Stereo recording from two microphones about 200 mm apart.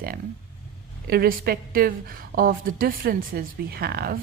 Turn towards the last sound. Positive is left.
turn(degrees=-50)  # may be behind; listen again after turning